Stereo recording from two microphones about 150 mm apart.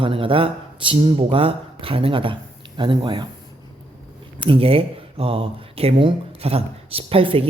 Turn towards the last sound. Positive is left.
turn(degrees=-35)  # may be behind; listen again after turning